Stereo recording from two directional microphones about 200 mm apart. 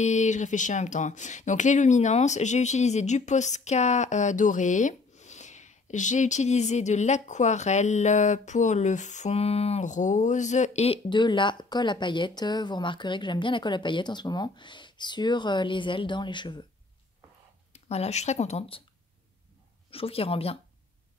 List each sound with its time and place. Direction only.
0.0 s speech: 35° left (ahead or behind)
17.7 s speech: 30° left (ahead or behind)
19.9 s speech: 30° left (ahead or behind)